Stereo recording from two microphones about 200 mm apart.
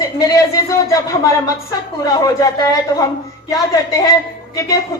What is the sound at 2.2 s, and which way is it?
Speech, 20° left (ahead or behind).